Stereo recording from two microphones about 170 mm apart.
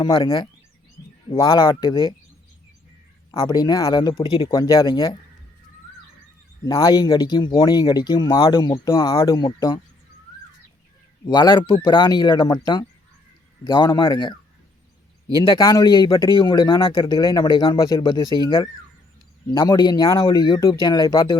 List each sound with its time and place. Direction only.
0.0 s speech: 30° left (ahead or behind)
1.5 s speech: 30° left (ahead or behind)
3.4 s speech: 25° left (ahead or behind)
4.5 s speech: 20° left (ahead or behind)
6.7 s speech: 20° left (ahead or behind)
11.3 s speech: 25° left (ahead or behind)
15.4 s speech: 25° left (ahead or behind)